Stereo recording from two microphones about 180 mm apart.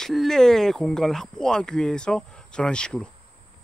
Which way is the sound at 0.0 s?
Centre (ahead or behind).